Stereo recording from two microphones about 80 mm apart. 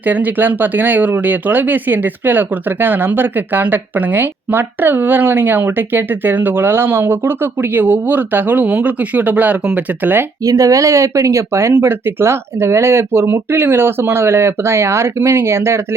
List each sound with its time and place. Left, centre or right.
0.0 s speech: right
10.4 s speech: right